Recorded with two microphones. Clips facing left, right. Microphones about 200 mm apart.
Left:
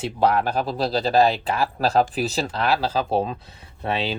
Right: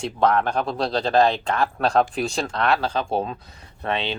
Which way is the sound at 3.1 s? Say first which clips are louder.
Left 3 dB; 30° left (ahead or behind).